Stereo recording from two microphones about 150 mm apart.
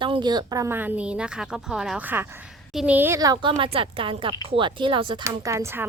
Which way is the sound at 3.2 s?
25° right (ahead or behind).